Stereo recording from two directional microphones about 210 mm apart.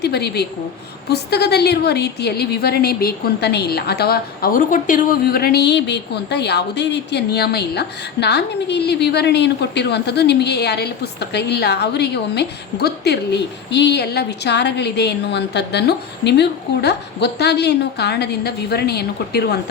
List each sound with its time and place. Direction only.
0.0 s a woman's voice: 50° left (ahead or behind)